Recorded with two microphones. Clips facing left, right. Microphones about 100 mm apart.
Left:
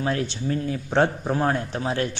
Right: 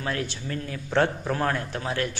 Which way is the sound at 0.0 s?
25° left (ahead or behind).